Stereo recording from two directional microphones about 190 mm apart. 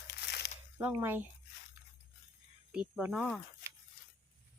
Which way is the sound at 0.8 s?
10° right (ahead or behind).